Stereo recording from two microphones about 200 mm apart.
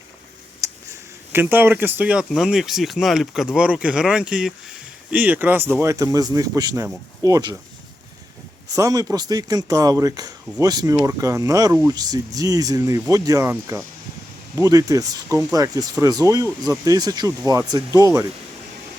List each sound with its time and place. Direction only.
0.6 s speech: 15° right (ahead or behind)
8.7 s speech: 15° right (ahead or behind)